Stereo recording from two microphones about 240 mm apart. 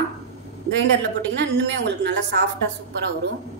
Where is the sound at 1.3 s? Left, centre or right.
Right.